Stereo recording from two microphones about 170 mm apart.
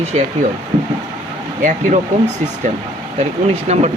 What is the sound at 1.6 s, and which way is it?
Speech, 50° right (ahead or behind).